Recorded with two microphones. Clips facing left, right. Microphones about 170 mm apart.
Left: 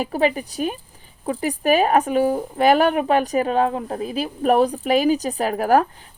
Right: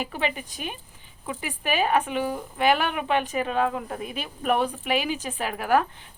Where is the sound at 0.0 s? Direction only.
40° left (ahead or behind).